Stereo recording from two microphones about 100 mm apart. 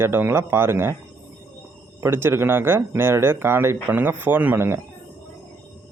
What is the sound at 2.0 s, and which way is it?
A man's voice, 25° right (ahead or behind).